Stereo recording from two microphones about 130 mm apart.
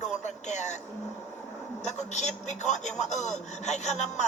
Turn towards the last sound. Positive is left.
turn(degrees=60)  # may be behind; listen again after turning